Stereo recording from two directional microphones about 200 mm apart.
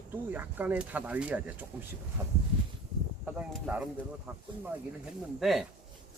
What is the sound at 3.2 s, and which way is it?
Speech, 5° right (ahead or behind).